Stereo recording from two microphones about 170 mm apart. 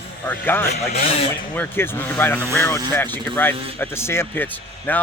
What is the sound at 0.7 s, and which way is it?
Speech, 40° left (ahead or behind).